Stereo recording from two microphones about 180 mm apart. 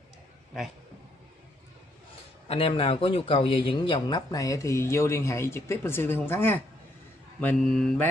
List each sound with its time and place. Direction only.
2.4 s speech: 30° left (ahead or behind); by 8.1 s 5° left (ahead or behind)